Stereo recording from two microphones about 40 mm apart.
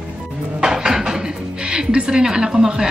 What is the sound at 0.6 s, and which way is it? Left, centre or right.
Dishes, centre.